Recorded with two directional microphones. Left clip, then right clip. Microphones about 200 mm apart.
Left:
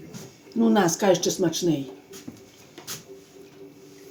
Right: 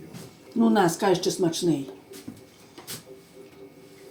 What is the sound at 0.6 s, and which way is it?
Speech, 25° left (ahead or behind).